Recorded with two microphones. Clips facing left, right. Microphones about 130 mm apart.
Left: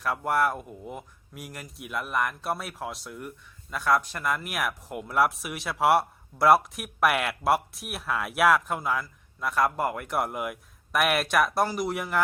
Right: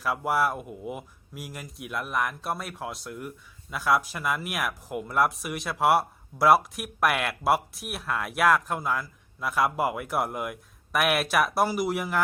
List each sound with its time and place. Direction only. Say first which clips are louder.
0.0 s speech: even; 5° right (ahead or behind)